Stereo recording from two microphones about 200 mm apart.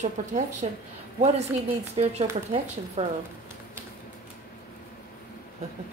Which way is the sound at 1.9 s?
30° right (ahead or behind).